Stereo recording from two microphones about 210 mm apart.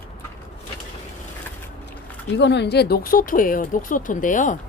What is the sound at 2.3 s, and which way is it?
Speech, 55° left (ahead or behind).